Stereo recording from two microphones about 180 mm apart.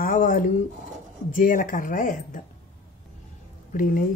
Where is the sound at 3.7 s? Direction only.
50° left (ahead or behind).